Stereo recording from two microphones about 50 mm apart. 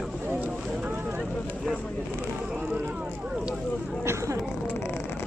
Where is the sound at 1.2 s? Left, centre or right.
Centre.